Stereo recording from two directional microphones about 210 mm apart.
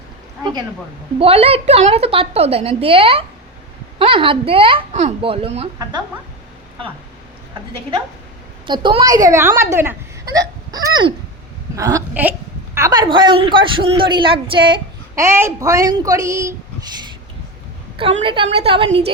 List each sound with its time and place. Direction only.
1.2 s a man's voice: 30° right (ahead or behind)
8.6 s a woman's voice: 25° right (ahead or behind)
10.7 s hiccup: 20° right (ahead or behind)
11.8 s a man's voice: 15° right (ahead or behind)
17.9 s a man's voice: 25° right (ahead or behind)